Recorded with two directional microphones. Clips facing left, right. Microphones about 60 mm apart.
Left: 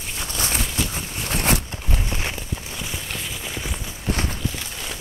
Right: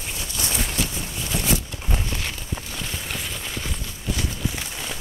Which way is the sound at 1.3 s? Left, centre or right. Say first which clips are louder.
Left 2 dB; left.